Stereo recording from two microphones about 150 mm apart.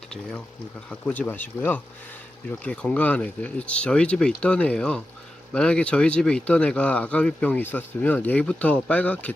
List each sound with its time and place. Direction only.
0.1 s speech: 5° left (ahead or behind)